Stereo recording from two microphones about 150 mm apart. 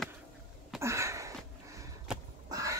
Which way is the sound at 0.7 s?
20° right (ahead or behind).